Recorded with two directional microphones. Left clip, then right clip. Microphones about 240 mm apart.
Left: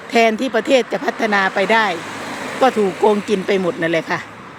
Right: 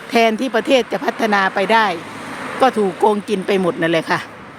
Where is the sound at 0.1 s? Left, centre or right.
Centre.